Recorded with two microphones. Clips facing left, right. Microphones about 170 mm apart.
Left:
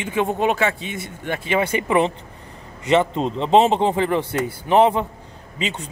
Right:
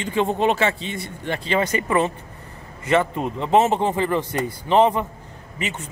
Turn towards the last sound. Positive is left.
turn(degrees=15)  # may be behind; listen again after turning